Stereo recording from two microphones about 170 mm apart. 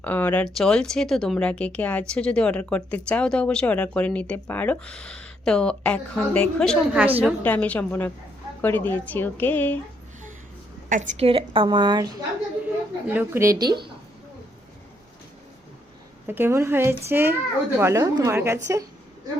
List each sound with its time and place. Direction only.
0.0 s speech: 10° left (ahead or behind)
7.0 s a woman's voice: 10° right (ahead or behind)
7.4 s speech: 10° left (ahead or behind)
10.8 s a woman's voice: 50° right (ahead or behind); by 12.1 s 25° right (ahead or behind)
13.1 s a woman's voice: 10° right (ahead or behind)
16.2 s a woman's voice: 10° right (ahead or behind)